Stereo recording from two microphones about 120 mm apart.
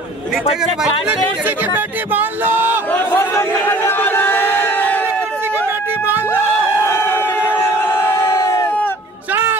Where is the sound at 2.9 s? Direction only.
15° left (ahead or behind).